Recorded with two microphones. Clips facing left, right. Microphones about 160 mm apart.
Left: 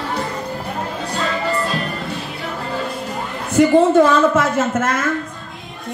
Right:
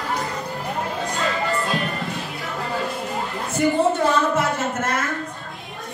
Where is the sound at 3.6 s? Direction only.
90° left.